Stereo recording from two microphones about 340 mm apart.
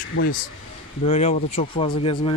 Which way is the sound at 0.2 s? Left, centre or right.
Left.